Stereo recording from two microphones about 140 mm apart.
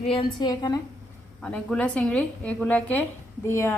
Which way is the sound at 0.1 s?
35° left (ahead or behind).